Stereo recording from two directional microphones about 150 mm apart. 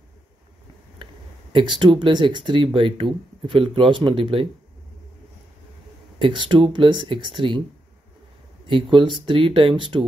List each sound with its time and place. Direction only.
1.5 s speech: 30° right (ahead or behind)
6.1 s speech: 30° right (ahead or behind)
8.6 s speech: 35° right (ahead or behind)